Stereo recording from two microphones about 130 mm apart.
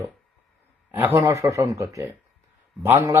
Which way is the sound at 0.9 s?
15° right (ahead or behind).